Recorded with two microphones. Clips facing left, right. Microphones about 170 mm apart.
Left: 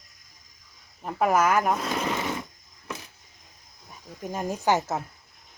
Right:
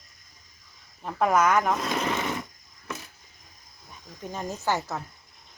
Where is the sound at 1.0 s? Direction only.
5° left (ahead or behind).